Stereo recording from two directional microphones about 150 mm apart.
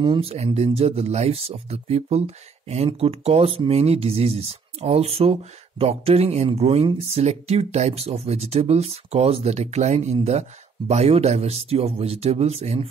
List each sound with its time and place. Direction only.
0.0 s speech: 35° right (ahead or behind)